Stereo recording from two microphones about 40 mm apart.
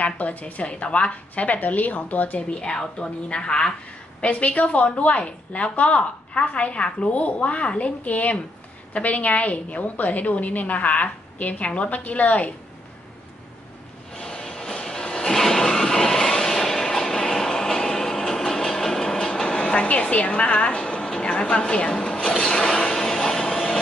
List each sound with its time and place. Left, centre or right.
0.0 s a woman's voice: left
2.6 s a woman's voice: left
4.2 s a woman's voice: left
14.1 s a sound: centre
19.9 s a woman's voice: left
22.3 s a sound: centre